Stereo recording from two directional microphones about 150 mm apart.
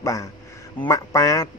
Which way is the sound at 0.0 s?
20° left (ahead or behind).